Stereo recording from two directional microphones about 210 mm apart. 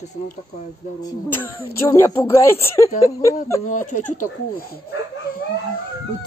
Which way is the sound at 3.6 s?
35° left (ahead or behind).